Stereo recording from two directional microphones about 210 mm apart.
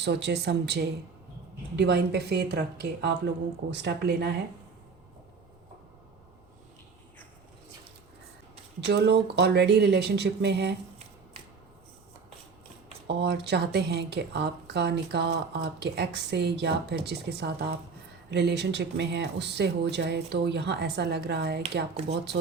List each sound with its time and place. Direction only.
0.0 s speech: 55° right (ahead or behind)
8.8 s speech: 50° right (ahead or behind)
13.1 s speech: 55° right (ahead or behind)